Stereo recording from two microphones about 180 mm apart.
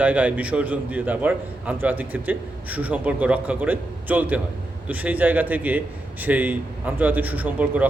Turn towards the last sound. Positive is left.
turn(degrees=-10)  # may be behind; listen again after turning